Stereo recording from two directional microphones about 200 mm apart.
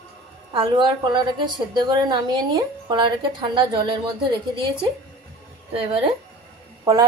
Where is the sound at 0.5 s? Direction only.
25° right (ahead or behind).